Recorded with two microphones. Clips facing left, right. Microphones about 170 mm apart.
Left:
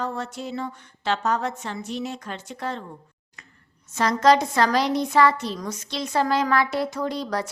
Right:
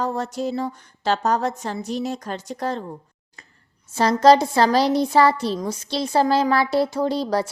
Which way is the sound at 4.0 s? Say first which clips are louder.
Right 4 dB; 30° right (ahead or behind).